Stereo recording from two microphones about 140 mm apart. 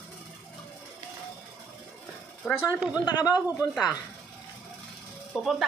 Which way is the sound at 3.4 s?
15° right (ahead or behind).